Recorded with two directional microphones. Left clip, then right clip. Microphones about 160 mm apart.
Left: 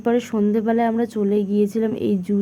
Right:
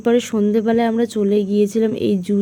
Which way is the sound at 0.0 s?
30° right (ahead or behind).